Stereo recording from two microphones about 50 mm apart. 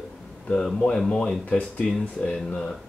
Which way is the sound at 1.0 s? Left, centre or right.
Centre.